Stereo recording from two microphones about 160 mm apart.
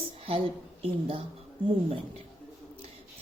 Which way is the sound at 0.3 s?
35° right (ahead or behind).